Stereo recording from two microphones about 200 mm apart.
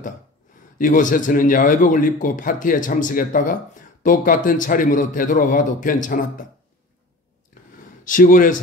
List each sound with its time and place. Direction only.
0.7 s a man's voice: 40° left (ahead or behind)
7.6 s a sound: 45° left (ahead or behind)
8.0 s a man's voice: 40° left (ahead or behind)